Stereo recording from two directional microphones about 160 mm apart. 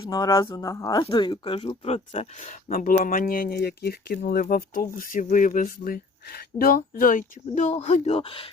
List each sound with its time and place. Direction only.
0.1 s speech: 20° left (ahead or behind)